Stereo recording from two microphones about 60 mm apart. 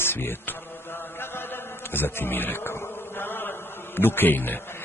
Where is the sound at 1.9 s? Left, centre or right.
Left.